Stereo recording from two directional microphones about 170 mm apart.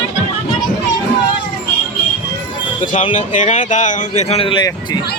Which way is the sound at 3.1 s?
45° left (ahead or behind).